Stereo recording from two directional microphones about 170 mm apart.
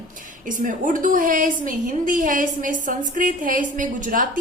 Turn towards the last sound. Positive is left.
turn(degrees=-50)  # may be behind; listen again after turning